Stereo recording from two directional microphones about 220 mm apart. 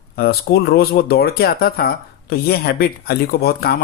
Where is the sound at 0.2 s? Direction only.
45° left (ahead or behind).